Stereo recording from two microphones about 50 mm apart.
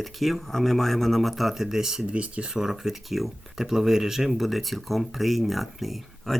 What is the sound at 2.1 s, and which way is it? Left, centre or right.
Speech, right.